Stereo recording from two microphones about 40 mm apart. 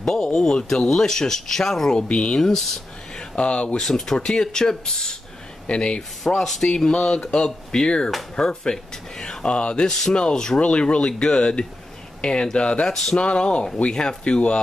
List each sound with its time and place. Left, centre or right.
0.0 s speech: centre
2.0 s speech: left
2.4 s speech: centre
3.3 s speech: left
3.8 s speech: centre
5.7 s speech: left
9.8 s speech: centre
10.6 s speech: left
12.8 s speech: centre
13.2 s speech: left